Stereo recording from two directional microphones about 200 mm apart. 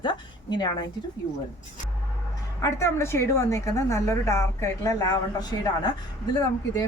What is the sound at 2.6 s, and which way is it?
A woman's voice, 15° left (ahead or behind).